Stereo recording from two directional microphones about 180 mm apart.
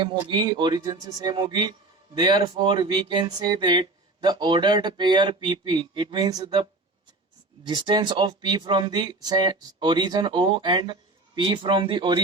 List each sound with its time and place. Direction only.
0.0 s speech: 25° right (ahead or behind)